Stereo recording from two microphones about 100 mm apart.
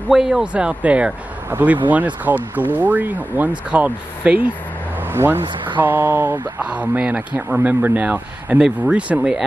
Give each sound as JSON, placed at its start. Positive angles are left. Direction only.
{"t": 0.1, "sound": "speech", "side_deg": -5}